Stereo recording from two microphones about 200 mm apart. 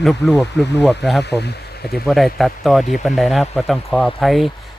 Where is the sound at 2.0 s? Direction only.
Centre (ahead or behind).